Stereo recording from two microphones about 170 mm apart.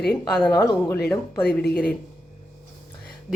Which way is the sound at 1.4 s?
70° left (ahead or behind).